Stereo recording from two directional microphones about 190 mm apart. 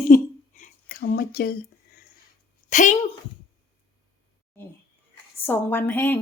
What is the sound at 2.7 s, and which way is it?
Speech, 40° left (ahead or behind).